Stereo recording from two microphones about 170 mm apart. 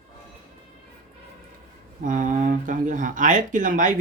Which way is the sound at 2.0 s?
50° right (ahead or behind).